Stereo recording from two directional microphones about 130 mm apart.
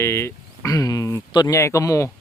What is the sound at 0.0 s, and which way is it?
Speech, 20° left (ahead or behind).